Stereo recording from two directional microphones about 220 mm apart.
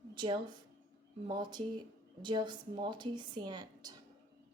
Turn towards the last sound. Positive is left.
turn(degrees=-20)  # may be behind; listen again after turning